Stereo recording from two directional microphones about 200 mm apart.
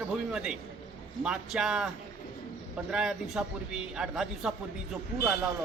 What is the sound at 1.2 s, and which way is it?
A man's voice, 5° right (ahead or behind).